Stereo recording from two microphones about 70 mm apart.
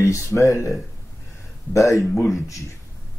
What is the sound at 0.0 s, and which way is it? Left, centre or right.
Speech, left.